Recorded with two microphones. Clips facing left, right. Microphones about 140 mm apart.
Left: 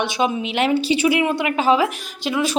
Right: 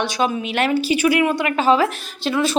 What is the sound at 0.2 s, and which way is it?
A woman's voice, 20° left (ahead or behind).